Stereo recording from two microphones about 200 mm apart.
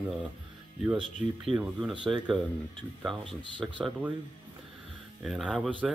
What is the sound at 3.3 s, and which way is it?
Speech, 25° right (ahead or behind).